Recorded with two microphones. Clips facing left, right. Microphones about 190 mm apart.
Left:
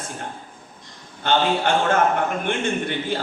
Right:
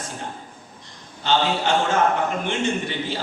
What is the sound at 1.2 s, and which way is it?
A man's voice, 55° left (ahead or behind).